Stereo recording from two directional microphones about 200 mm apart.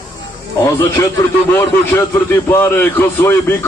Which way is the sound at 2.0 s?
10° left (ahead or behind).